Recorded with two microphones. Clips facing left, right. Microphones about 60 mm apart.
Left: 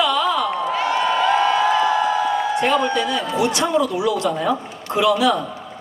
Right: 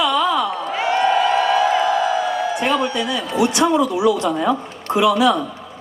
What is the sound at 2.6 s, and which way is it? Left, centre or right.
A man's voice, centre.